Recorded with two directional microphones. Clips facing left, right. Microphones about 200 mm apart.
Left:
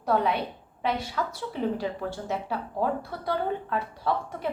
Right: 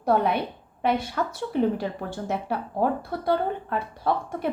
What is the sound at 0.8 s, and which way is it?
A woman's voice, 55° right (ahead or behind).